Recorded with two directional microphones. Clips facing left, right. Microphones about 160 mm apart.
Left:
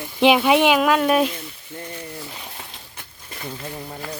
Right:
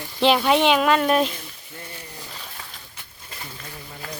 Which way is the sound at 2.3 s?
20° left (ahead or behind).